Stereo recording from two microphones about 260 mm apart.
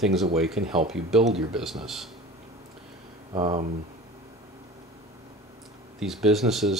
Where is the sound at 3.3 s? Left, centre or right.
Centre.